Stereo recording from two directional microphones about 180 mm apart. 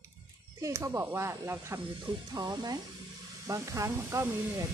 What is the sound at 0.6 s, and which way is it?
Speech, 15° right (ahead or behind).